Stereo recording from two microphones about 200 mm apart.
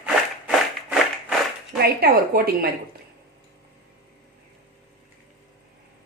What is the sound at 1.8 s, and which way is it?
Speech, 50° right (ahead or behind).